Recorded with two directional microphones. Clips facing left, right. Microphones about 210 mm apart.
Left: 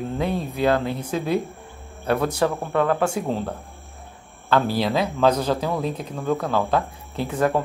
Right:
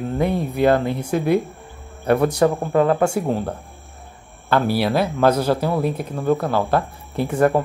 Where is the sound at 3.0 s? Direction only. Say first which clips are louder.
Right 4 dB; 10° right (ahead or behind).